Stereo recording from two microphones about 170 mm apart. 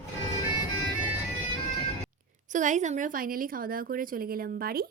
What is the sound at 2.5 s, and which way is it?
Speech, 45° right (ahead or behind).